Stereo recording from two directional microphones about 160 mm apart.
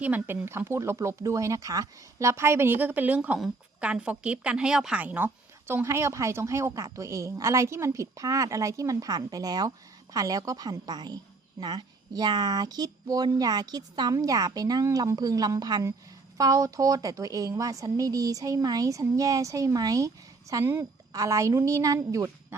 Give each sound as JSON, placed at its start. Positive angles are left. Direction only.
{"t": 0.0, "sound": "speech", "side_deg": -10}